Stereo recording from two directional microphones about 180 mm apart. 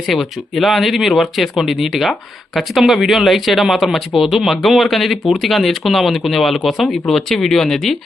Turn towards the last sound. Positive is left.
turn(degrees=0)  # may be behind; listen again after turning